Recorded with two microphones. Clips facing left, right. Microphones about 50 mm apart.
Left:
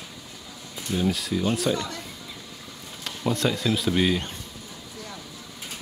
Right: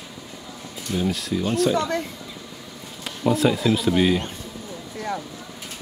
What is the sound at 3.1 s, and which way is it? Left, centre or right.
Speech, centre.